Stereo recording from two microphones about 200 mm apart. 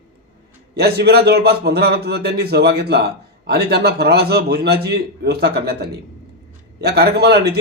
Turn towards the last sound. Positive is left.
turn(degrees=-55)  # may be behind; listen again after turning